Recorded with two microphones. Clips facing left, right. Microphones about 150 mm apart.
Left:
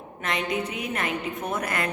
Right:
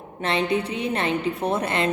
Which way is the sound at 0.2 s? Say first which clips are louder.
Right 5 dB; 30° right (ahead or behind).